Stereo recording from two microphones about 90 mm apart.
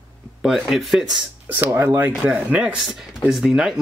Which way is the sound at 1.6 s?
30° right (ahead or behind).